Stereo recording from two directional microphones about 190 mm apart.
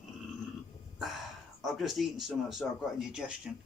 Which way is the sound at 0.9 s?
Centre (ahead or behind).